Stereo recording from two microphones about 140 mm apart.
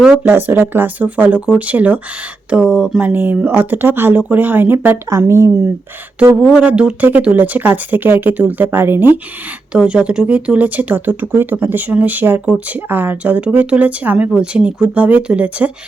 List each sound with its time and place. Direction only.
0.0 s speech: 10° right (ahead or behind)
6.4 s speech: 5° right (ahead or behind)